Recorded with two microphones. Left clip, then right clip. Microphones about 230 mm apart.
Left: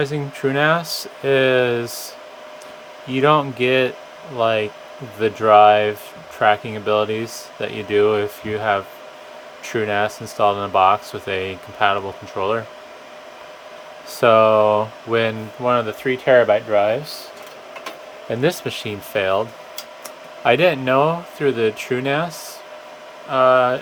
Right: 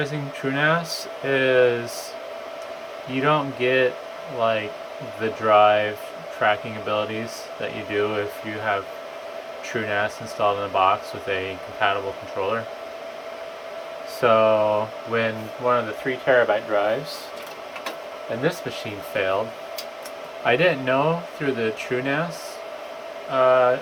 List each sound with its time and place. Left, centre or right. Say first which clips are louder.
0.0 s speech: left 5 dB; left
3.1 s speech: left 6 dB; left
14.2 s speech: left 5 dB; left
18.4 s speech: left 5 dB; left
20.4 s speech: left 4 dB; left
23.3 s speech: left 3 dB; left